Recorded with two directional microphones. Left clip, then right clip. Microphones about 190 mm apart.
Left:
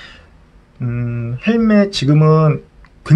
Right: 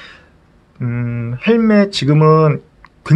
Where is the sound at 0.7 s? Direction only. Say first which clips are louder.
Right 2 dB; 35° right (ahead or behind).